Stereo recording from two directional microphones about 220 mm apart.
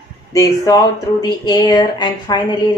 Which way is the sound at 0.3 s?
15° left (ahead or behind).